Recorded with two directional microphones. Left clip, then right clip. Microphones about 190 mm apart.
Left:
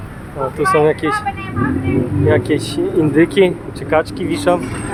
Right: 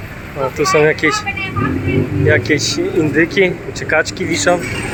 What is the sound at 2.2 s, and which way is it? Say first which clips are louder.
Speech: right 2 dB; 5° left (ahead or behind).